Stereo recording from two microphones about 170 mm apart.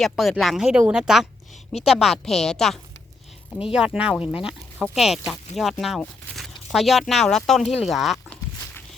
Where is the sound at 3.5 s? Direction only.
35° left (ahead or behind).